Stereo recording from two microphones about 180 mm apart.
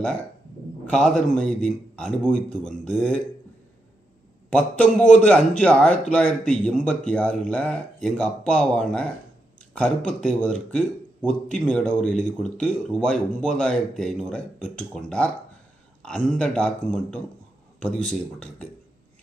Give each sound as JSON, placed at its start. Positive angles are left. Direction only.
{"t": 0.8, "sound": "a man's voice", "side_deg": 5}
{"t": 4.5, "sound": "a man's voice", "side_deg": 5}